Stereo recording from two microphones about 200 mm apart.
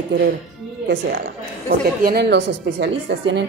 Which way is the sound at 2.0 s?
55° right (ahead or behind).